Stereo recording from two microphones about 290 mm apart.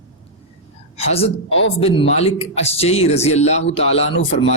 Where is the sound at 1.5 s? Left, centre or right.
Left.